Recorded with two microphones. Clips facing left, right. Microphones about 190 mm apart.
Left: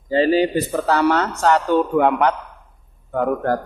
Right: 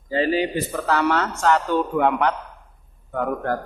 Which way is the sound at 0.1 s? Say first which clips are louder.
Left 5 dB; 30° left (ahead or behind).